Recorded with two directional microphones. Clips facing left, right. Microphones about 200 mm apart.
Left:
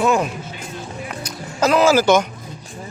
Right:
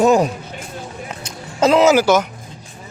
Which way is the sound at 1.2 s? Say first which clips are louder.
Right 3 dB; 25° right (ahead or behind).